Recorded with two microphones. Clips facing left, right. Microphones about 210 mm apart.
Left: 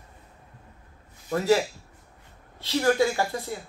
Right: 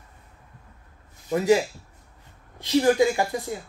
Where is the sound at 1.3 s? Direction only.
15° right (ahead or behind).